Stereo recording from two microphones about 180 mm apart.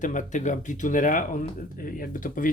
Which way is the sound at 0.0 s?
45° left (ahead or behind).